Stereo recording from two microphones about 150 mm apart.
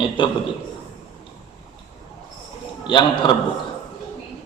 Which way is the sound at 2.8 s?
30° left (ahead or behind).